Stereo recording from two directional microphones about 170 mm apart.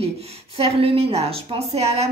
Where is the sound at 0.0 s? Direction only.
35° right (ahead or behind).